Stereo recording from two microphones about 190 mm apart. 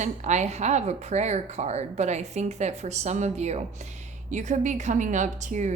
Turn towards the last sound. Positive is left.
turn(degrees=-40)  # may be behind; listen again after turning